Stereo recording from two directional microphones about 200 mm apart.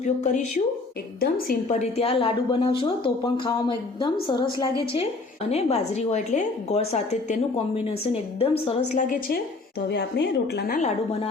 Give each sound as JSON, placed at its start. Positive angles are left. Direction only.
{"t": 0.0, "sound": "a woman's voice", "side_deg": 35}
{"t": 1.6, "sound": "a woman's voice", "side_deg": 35}
{"t": 5.5, "sound": "a woman's voice", "side_deg": 30}
{"t": 9.9, "sound": "a woman's voice", "side_deg": 55}
{"t": 10.8, "sound": "a woman's voice", "side_deg": 35}